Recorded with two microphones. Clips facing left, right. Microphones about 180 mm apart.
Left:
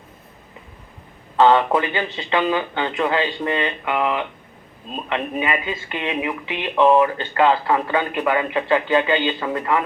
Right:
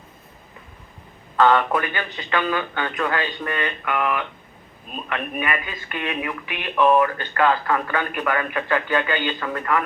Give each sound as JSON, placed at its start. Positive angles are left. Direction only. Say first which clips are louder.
{"t": 1.4, "sound": "speech", "louder": "left 3 dB", "side_deg": 20}